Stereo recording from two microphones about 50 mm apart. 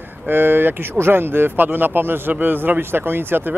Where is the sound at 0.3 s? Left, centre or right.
Right.